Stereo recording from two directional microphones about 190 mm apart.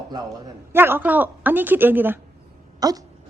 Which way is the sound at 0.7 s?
10° right (ahead or behind).